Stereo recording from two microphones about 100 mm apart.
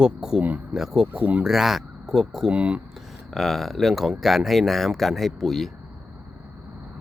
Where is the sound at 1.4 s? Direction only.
5° right (ahead or behind).